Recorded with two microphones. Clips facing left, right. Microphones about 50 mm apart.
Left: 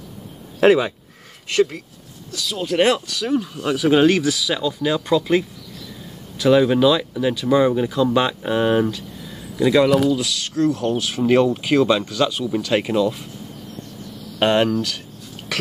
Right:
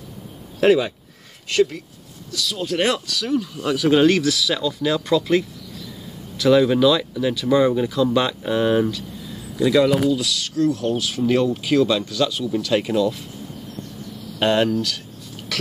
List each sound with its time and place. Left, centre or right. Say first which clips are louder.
0.6 s speech: left 2 dB; left
10.0 s speech: left 1 dB; left
14.4 s speech: left 1 dB; left